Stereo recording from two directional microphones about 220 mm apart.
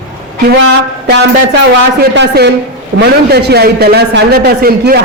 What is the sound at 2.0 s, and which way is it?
A man's voice, 50° right (ahead or behind).